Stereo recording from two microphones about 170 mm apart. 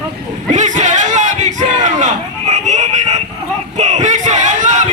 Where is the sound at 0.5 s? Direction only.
45° right (ahead or behind).